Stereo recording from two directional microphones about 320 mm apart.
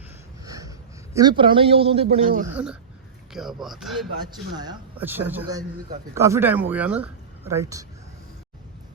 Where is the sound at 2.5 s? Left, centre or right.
Centre.